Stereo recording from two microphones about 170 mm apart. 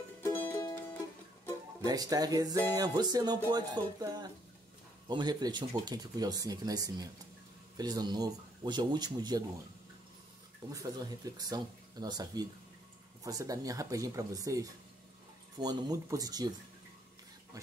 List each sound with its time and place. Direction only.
0.2 s music: 10° left (ahead or behind)
1.8 s speech: 20° right (ahead or behind)
10.7 s speech: 20° right (ahead or behind)